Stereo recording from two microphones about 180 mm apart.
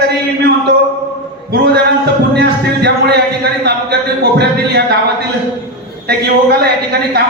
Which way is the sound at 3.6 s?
65° right (ahead or behind).